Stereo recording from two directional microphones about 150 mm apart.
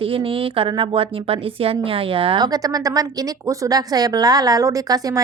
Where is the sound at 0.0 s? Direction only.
35° right (ahead or behind).